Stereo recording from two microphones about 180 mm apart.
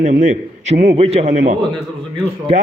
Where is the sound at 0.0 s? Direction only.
45° right (ahead or behind).